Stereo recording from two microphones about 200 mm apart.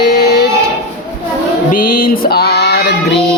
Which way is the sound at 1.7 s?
45° left (ahead or behind).